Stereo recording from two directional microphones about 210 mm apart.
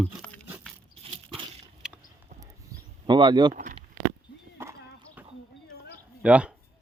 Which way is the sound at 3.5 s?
40° right (ahead or behind).